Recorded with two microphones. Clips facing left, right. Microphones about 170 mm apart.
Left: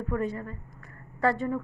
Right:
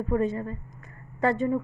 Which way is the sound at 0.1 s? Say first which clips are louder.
Right 5 dB; 25° right (ahead or behind).